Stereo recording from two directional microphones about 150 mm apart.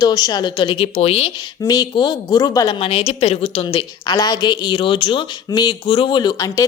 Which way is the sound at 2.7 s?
35° left (ahead or behind).